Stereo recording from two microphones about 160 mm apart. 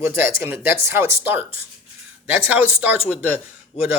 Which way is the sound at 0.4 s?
15° right (ahead or behind).